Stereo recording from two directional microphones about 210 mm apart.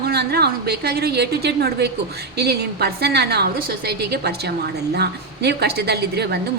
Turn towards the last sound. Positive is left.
turn(degrees=-50)  # may be behind; listen again after turning